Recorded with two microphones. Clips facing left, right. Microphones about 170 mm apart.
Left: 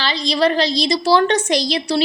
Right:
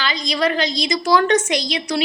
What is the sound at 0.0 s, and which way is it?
A woman's voice, 35° left (ahead or behind).